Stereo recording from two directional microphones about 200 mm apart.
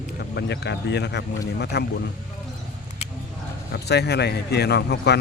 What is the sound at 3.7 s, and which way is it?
A man's voice, 55° left (ahead or behind).